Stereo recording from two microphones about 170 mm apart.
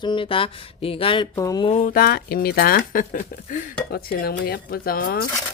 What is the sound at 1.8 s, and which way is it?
Speech, 60° left (ahead or behind).